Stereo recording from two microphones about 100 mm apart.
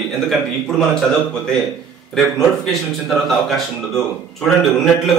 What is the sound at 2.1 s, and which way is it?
A man's voice, 5° left (ahead or behind).